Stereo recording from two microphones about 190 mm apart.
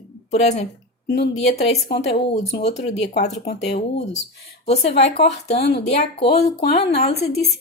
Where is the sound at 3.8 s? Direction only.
35° left (ahead or behind).